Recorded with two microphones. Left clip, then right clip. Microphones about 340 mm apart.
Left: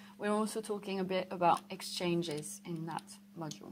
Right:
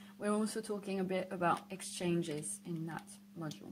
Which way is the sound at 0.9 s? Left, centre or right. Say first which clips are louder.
Left 2 dB; centre.